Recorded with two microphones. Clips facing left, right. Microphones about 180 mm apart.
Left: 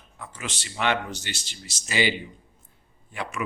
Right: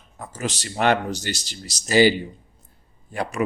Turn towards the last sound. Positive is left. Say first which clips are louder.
# right 6 dB
turn(degrees=-40)  # may be behind; listen again after turning